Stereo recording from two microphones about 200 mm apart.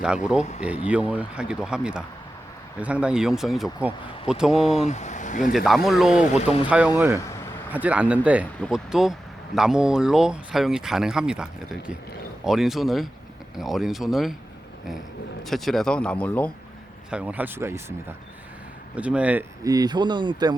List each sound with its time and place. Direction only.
0.9 s speech: 5° right (ahead or behind)
4.7 s speech: 35° left (ahead or behind)
5.5 s speech: centre (ahead or behind)
7.2 s a sound: 15° left (ahead or behind)
7.7 s speech: 5° right (ahead or behind)
15.4 s speech: centre (ahead or behind)
17.1 s speech: 5° right (ahead or behind)
18.9 s speech: 5° right (ahead or behind); by 20.6 s 20° right (ahead or behind)